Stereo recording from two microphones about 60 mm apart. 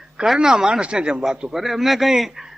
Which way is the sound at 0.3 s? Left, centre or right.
Centre.